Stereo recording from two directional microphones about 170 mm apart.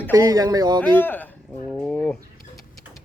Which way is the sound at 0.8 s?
10° left (ahead or behind).